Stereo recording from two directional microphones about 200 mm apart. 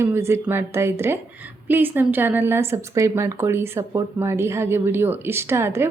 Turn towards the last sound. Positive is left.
turn(degrees=-10)  # may be behind; listen again after turning